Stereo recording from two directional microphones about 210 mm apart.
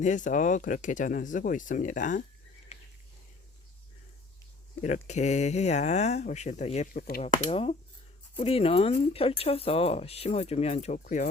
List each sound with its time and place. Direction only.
0.0 s speech: 35° left (ahead or behind)
2.7 s ratchet: 30° left (ahead or behind)
4.8 s speech: 35° left (ahead or behind)